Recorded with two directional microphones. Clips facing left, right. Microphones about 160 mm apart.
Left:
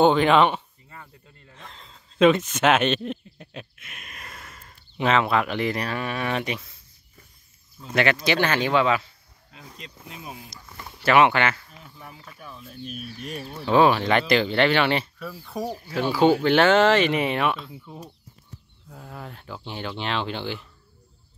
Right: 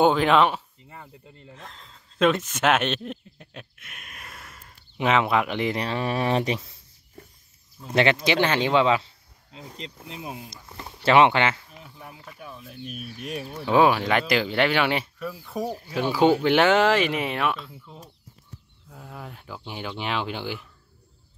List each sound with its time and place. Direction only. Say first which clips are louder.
0.0 s speech: left 1 dB; centre (ahead or behind)
0.8 s chop: right 2 dB; 15° right (ahead or behind)
1.5 s a sound: even; centre (ahead or behind)
4.9 s speech: even; 15° right (ahead or behind); by 6.7 s 30° right (ahead or behind)
7.9 s speech: right 1 dB; 25° right (ahead or behind)
11.7 s speech: right 1 dB; 5° right (ahead or behind)
17.7 s speech: left 4 dB; 10° left (ahead or behind)
18.9 s speech: left 1 dB; centre (ahead or behind)